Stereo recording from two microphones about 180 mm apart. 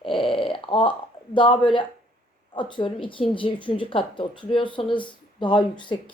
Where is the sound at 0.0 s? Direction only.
30° left (ahead or behind).